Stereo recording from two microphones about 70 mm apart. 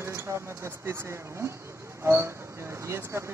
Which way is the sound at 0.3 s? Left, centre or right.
Right.